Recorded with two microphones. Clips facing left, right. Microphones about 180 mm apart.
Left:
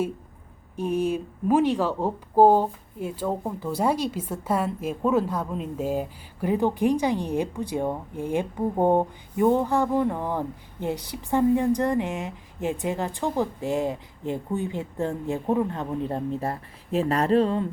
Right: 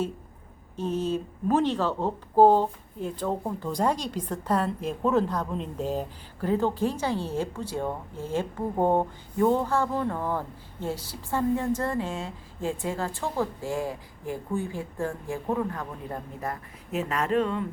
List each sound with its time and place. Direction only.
0.8 s speech: 10° left (ahead or behind); by 17.7 s 35° left (ahead or behind)